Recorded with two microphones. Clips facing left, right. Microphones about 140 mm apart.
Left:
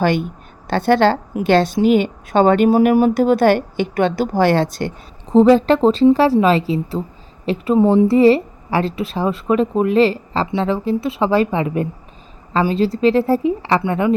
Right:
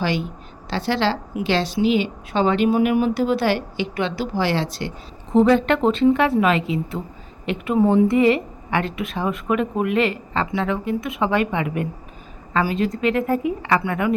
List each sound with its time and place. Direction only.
0.0 s a woman's voice: 55° left (ahead or behind)
5.3 s a woman's voice: 35° left (ahead or behind)